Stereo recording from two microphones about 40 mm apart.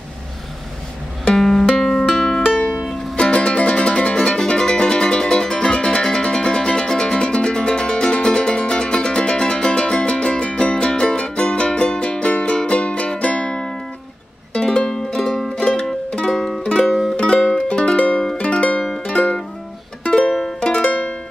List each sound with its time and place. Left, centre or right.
1.3 s music: centre
2.4 s music: left
2.7 s music: centre
3.2 s music: left; by 17.1 s centre
17.9 s music: left
20.1 s music: centre
20.8 s music: left